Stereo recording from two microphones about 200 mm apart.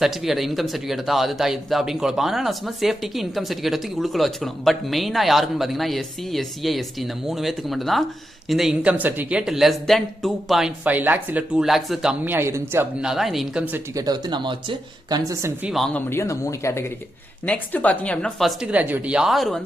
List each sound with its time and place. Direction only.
0.0 s a man's voice: centre (ahead or behind)
13.9 s speech: 20° right (ahead or behind)
15.7 s a man's voice: 5° left (ahead or behind)